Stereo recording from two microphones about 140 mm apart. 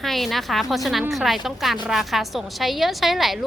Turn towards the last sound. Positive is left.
turn(degrees=0)  # may be behind; listen again after turning